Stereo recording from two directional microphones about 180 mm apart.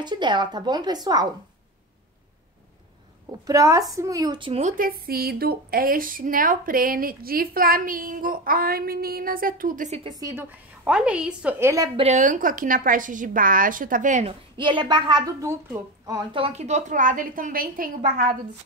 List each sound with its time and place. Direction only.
0.0 s a woman's voice: 25° right (ahead or behind)
3.3 s a woman's voice: 20° right (ahead or behind)
4.6 s speech: 45° right (ahead or behind)
10.1 s a woman's voice: 20° right (ahead or behind)
10.8 s a woman's voice: 5° right (ahead or behind)
12.0 s speech: 40° right (ahead or behind)
14.6 s a woman's voice: 25° right (ahead or behind); by 18.3 s 50° right (ahead or behind)